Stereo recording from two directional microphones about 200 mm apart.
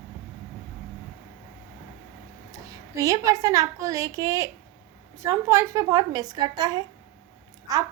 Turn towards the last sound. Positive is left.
turn(degrees=-20)  # may be behind; listen again after turning